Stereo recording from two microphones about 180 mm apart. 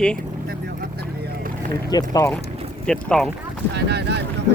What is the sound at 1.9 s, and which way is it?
Speech, 20° left (ahead or behind).